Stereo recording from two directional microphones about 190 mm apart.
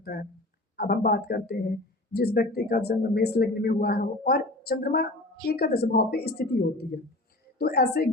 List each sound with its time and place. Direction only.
0.0 s speech: 55° left (ahead or behind)